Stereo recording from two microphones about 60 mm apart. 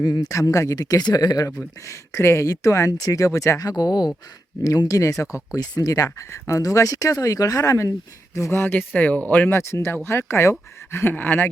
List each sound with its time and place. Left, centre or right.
0.0 s speech: left
1.5 s speech: left
2.5 s speech: left
4.6 s speech: left
8.4 s speech: left
9.5 s speech: left
11.1 s speech: left